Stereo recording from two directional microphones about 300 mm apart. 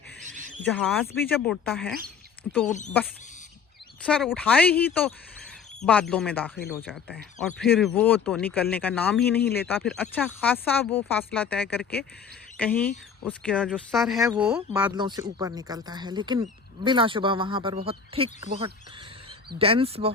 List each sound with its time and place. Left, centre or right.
0.3 s a sound: right
1.1 s speech: centre
4.0 s speech: centre